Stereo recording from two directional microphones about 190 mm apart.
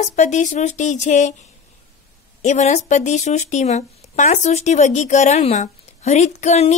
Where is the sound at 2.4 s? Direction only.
35° left (ahead or behind).